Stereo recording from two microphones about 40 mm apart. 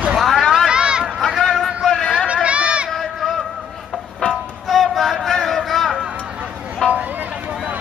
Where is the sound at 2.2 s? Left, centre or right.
Right.